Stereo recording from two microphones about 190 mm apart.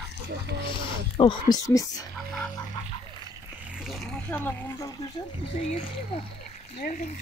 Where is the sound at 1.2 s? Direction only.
20° left (ahead or behind).